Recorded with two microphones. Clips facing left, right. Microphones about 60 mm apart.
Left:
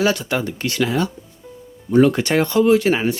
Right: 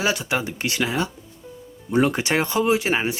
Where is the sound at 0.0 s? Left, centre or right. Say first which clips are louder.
Left 4 dB; centre.